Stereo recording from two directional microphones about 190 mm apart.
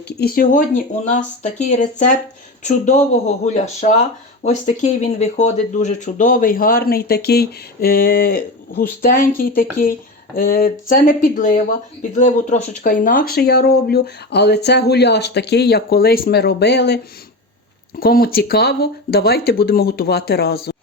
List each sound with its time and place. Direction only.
0.1 s speech: 55° left (ahead or behind)
18.0 s speech: 50° left (ahead or behind)